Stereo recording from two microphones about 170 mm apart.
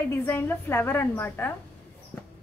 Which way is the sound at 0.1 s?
15° left (ahead or behind).